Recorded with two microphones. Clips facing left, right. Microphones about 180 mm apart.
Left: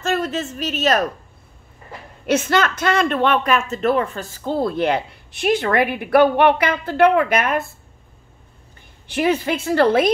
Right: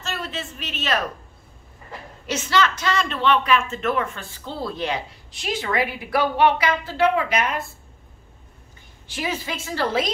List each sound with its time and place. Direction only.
0.0 s a woman's voice: 45° left (ahead or behind)
2.2 s speech: 55° left (ahead or behind)
9.0 s speech: 60° left (ahead or behind)